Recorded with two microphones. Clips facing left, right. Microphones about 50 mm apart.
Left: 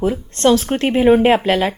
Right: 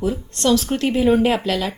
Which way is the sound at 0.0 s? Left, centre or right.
Left.